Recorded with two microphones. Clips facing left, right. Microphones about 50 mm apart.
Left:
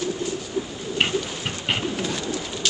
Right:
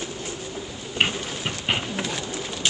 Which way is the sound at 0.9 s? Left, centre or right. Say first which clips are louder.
Left 1 dB; centre.